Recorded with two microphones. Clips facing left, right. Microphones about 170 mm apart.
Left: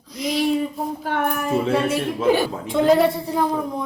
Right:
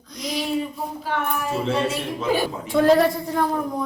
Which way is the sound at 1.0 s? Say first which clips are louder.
Left 2 dB; 55° left (ahead or behind).